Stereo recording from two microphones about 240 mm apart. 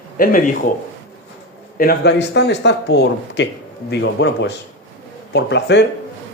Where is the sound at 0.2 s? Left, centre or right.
Left.